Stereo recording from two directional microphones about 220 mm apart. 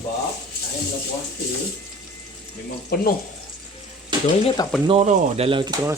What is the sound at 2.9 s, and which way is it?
Speech, 45° left (ahead or behind).